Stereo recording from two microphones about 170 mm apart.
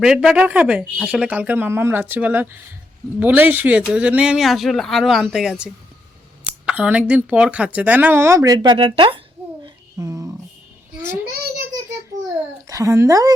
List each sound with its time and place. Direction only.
0.0 s speech: 5° right (ahead or behind)
6.7 s speech: 5° right (ahead or behind); by 9.2 s 30° right (ahead or behind)
9.6 s a sound: 20° right (ahead or behind)
11.0 s speech: 15° right (ahead or behind)
12.6 s speech: 20° right (ahead or behind)